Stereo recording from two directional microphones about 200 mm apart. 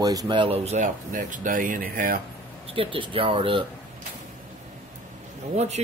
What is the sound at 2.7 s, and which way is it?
Speech, 25° right (ahead or behind).